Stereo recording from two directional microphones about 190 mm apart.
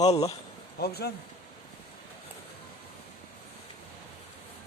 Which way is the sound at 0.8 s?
55° left (ahead or behind).